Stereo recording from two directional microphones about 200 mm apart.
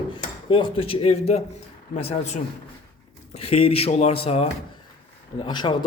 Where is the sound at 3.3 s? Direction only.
30° left (ahead or behind).